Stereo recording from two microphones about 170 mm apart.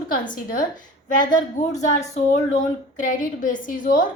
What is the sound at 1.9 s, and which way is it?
A woman's voice, 40° left (ahead or behind).